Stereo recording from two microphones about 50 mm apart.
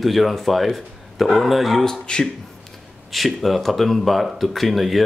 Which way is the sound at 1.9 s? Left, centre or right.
Centre.